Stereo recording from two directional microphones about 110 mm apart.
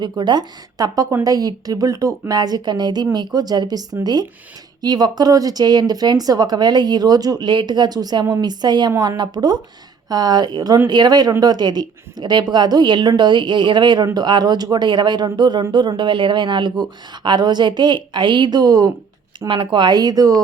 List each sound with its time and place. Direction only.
0.0 s a woman's voice: 45° right (ahead or behind)
19.5 s speech: 50° right (ahead or behind)